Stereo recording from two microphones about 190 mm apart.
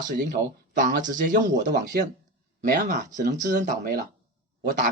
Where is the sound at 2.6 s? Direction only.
50° right (ahead or behind).